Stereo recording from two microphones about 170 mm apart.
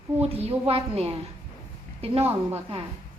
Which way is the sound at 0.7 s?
35° right (ahead or behind).